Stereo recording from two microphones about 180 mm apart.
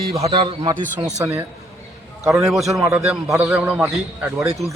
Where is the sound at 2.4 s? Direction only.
Centre (ahead or behind).